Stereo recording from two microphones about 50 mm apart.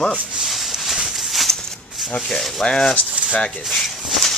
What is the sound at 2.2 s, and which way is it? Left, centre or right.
Rub, centre.